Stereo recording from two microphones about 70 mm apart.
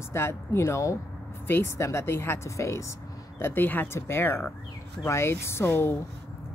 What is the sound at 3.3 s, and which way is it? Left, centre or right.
Speech, left.